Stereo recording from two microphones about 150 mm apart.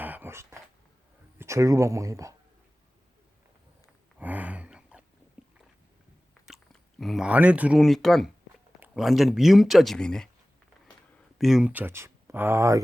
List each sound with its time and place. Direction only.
0.0 s dog: 10° right (ahead or behind)
1.4 s speech: 20° right (ahead or behind)
4.2 s a sound: 10° right (ahead or behind)
7.0 s speech: 5° right (ahead or behind)
7.8 s speech: centre (ahead or behind)
11.3 s speech: centre (ahead or behind); by 12.8 s 20° right (ahead or behind)